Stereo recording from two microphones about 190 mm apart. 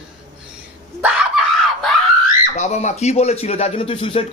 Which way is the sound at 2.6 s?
35° left (ahead or behind).